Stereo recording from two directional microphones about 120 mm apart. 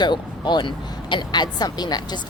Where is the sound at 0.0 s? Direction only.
40° left (ahead or behind).